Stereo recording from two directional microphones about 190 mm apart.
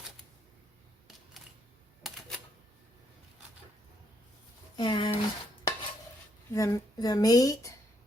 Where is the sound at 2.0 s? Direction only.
Centre (ahead or behind).